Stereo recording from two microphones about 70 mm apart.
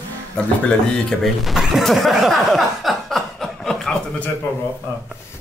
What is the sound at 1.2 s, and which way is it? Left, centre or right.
Speech, centre.